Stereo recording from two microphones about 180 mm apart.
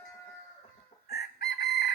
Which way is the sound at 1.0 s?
65° left (ahead or behind).